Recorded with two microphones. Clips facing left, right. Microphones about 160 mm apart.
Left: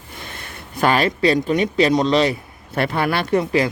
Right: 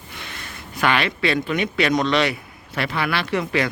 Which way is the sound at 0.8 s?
40° left (ahead or behind).